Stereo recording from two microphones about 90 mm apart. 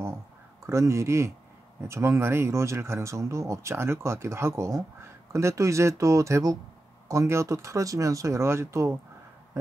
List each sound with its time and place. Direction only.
0.7 s speech: 35° right (ahead or behind)